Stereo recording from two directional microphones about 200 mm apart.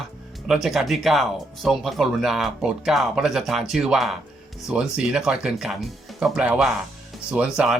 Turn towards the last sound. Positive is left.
turn(degrees=-5)  # may be behind; listen again after turning